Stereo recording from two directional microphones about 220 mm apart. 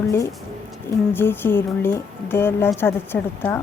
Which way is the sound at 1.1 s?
10° left (ahead or behind).